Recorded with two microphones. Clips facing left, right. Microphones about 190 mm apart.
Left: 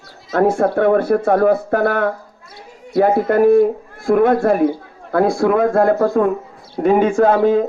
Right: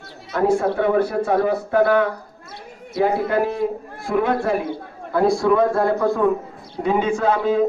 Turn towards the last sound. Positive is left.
turn(degrees=50)  # may be behind; listen again after turning